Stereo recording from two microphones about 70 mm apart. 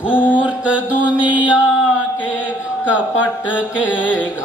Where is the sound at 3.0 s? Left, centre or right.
Centre.